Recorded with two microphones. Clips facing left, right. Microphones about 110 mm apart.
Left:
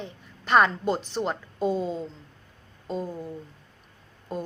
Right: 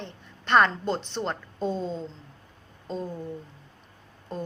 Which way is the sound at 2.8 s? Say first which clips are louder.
Left 2 dB; 5° left (ahead or behind).